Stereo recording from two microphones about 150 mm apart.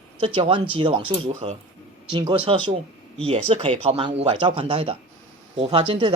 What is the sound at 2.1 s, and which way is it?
Speech, 30° right (ahead or behind).